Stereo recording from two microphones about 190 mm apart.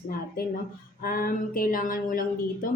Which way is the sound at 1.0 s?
50° left (ahead or behind).